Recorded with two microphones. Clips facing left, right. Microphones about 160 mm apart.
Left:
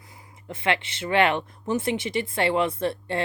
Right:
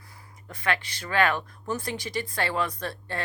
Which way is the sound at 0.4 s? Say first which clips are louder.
Left 3 dB; 25° left (ahead or behind).